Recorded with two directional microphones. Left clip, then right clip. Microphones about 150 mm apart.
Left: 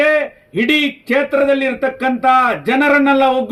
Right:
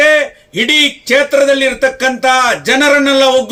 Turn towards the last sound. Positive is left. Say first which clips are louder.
# right 3 dB
turn(degrees=-20)  # may be behind; listen again after turning